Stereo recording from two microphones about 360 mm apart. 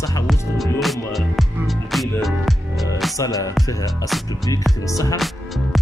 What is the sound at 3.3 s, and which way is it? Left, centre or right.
Speech, centre.